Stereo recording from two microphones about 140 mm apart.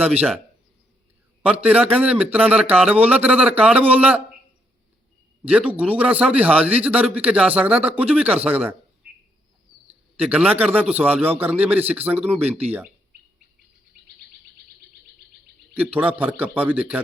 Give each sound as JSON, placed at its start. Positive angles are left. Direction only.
{"t": 1.4, "sound": "a man's voice", "side_deg": -10}
{"t": 5.5, "sound": "a man's voice", "side_deg": -10}
{"t": 10.2, "sound": "a man's voice", "side_deg": -10}
{"t": 15.7, "sound": "a man's voice", "side_deg": -10}